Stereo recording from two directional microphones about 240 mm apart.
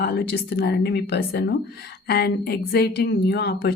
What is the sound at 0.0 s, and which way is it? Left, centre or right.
A woman's voice, left.